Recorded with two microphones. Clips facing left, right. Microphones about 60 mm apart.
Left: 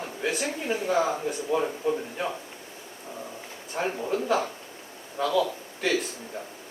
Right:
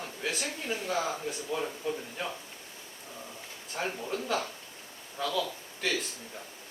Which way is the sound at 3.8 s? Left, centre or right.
Left.